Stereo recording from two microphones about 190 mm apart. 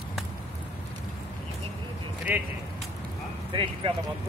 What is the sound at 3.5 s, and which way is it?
Speech, 25° right (ahead or behind).